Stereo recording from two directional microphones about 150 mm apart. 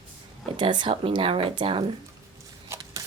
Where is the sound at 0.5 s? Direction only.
30° right (ahead or behind).